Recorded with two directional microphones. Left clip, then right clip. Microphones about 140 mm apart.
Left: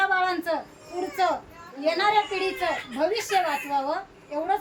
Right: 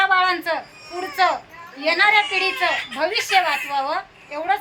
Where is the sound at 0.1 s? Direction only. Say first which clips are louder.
Right 6 dB; 15° left (ahead or behind).